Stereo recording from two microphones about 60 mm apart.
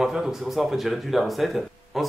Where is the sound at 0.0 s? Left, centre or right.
Centre.